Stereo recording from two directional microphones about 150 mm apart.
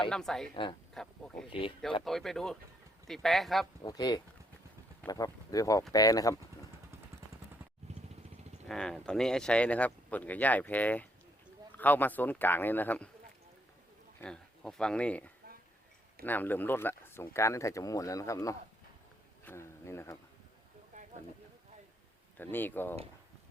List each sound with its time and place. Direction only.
0.1 s speech: 5° left (ahead or behind)
0.5 s speech: 35° left (ahead or behind)
2.0 s speech: centre (ahead or behind)
3.8 s speech: 25° left (ahead or behind)
8.6 s speech: 5° left (ahead or behind)
14.2 s speech: 5° left (ahead or behind)
20.9 s a sound: 55° right (ahead or behind)
22.4 s speech: 15° left (ahead or behind)